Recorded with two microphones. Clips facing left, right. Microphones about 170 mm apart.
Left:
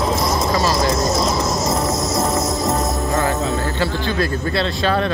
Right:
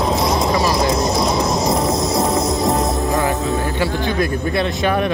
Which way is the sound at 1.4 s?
30° right (ahead or behind).